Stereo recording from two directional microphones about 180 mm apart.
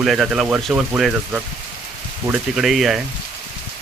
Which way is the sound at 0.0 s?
Centre (ahead or behind).